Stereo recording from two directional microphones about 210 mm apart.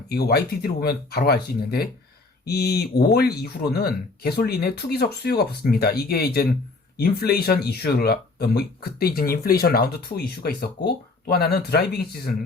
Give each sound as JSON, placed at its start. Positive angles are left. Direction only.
{"t": 0.1, "sound": "speech", "side_deg": 45}